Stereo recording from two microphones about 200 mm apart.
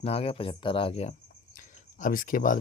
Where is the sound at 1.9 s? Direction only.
40° left (ahead or behind).